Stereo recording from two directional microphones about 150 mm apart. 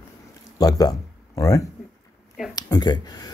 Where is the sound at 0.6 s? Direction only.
25° left (ahead or behind).